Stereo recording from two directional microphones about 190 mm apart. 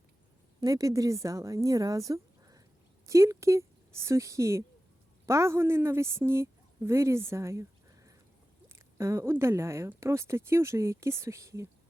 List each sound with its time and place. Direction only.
0.6 s a woman's voice: 20° right (ahead or behind)